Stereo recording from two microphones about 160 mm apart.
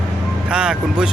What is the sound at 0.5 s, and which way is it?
Speech, 5° right (ahead or behind).